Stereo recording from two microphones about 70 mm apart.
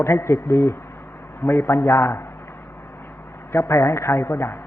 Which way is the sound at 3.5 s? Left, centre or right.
Left.